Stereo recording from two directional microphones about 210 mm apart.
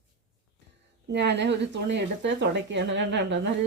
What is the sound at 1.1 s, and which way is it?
A woman's voice, 55° right (ahead or behind).